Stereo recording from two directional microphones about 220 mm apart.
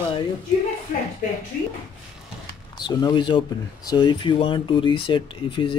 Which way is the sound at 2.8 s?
20° left (ahead or behind).